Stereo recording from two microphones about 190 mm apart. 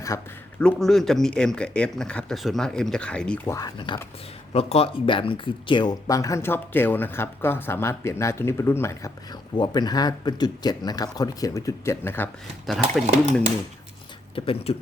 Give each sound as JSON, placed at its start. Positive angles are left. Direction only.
{"t": 0.1, "sound": "speech", "side_deg": 15}
{"t": 0.6, "sound": "speech", "side_deg": 0}
{"t": 12.6, "sound": "speech", "side_deg": 0}
{"t": 14.3, "sound": "speech", "side_deg": 30}